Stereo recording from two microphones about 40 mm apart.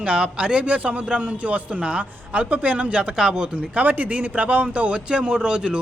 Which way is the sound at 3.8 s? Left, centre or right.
Right.